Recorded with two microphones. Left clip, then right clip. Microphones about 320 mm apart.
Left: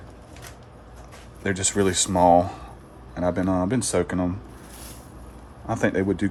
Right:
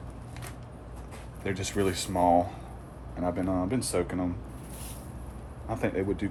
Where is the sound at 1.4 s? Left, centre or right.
Left.